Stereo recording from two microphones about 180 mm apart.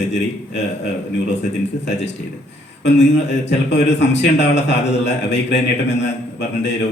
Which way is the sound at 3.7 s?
75° left (ahead or behind).